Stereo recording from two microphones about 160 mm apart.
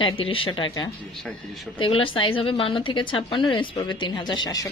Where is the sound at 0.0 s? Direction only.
35° left (ahead or behind).